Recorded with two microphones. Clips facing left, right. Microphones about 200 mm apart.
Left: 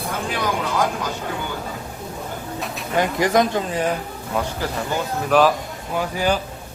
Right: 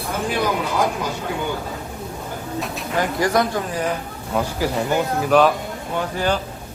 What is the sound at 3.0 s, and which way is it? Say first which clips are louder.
Speech: left 1 dB; 20° left (ahead or behind).